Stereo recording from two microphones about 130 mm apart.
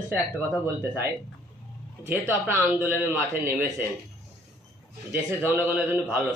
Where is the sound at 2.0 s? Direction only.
15° right (ahead or behind).